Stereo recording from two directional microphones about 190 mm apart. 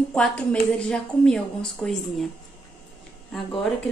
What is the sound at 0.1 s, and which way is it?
A woman's voice, 5° left (ahead or behind).